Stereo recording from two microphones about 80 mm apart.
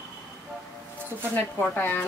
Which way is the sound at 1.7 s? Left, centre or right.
Left.